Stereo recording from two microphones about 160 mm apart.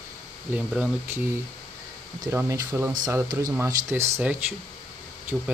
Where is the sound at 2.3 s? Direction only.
15° right (ahead or behind).